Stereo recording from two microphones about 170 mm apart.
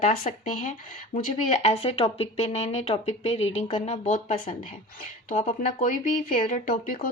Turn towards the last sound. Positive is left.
turn(degrees=55)  # may be behind; listen again after turning